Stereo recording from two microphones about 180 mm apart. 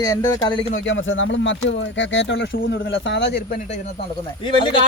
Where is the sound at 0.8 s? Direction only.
90° left.